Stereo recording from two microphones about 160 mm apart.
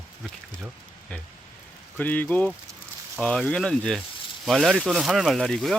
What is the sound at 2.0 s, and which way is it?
Speech, 10° left (ahead or behind).